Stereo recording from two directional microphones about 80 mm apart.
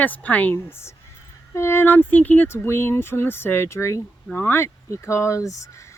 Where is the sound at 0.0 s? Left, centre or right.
Left.